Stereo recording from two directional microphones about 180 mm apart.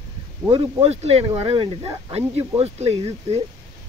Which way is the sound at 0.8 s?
35° right (ahead or behind).